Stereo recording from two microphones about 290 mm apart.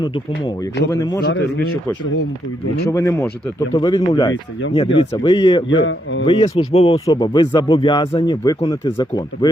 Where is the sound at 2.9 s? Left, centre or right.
Centre.